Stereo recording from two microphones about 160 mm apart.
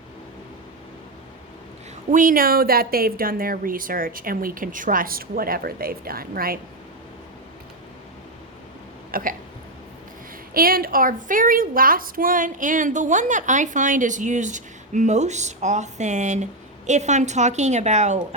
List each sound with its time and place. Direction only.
2.0 s speech: 55° right (ahead or behind)
9.1 s hiccup: 65° right (ahead or behind)
10.5 s a woman's voice: 65° right (ahead or behind); by 18.2 s 45° right (ahead or behind)